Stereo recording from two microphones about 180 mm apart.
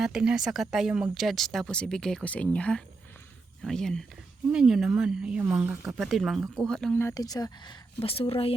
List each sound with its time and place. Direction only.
0.0 s speech: 5° right (ahead or behind)
7.0 s speech: 20° left (ahead or behind)